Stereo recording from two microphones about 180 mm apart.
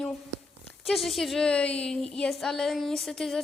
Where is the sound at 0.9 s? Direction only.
Centre (ahead or behind).